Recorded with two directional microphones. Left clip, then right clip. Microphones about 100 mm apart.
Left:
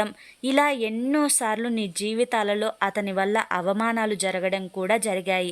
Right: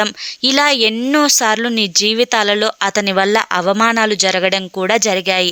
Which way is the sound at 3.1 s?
35° right (ahead or behind).